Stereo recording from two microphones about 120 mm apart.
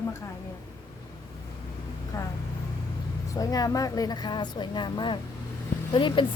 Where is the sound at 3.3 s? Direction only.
30° left (ahead or behind).